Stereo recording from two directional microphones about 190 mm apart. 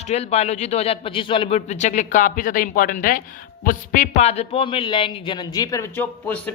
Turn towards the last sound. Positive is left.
turn(degrees=10)  # may be behind; listen again after turning